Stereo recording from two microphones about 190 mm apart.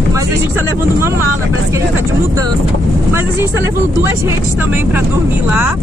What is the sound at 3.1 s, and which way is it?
Speech, 15° right (ahead or behind).